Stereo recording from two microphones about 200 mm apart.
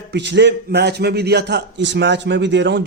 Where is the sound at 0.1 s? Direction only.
60° right (ahead or behind).